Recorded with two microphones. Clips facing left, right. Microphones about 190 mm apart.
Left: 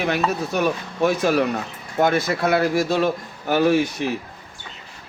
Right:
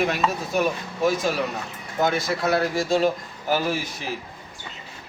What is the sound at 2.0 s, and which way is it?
A man's voice, 60° left (ahead or behind).